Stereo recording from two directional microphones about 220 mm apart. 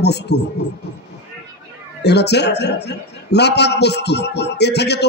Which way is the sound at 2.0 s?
50° left (ahead or behind).